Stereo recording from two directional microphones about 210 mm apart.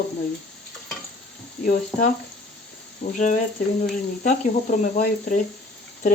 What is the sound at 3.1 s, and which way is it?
Speech, 35° left (ahead or behind).